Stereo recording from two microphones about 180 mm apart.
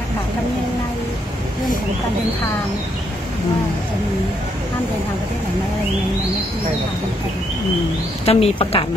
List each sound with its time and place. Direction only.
8.3 s speech: 35° left (ahead or behind)